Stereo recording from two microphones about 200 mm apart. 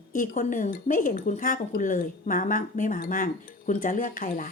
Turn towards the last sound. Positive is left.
turn(degrees=45)  # may be behind; listen again after turning